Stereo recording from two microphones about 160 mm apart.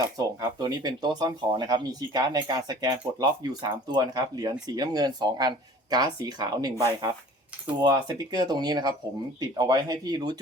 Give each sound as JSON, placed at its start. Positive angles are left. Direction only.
{"t": 0.7, "sound": "speech", "side_deg": -25}